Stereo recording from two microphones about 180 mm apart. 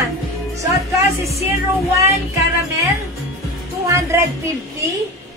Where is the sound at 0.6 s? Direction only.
15° right (ahead or behind).